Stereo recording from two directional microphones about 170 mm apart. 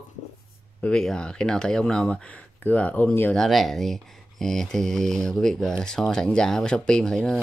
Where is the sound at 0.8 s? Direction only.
5° left (ahead or behind).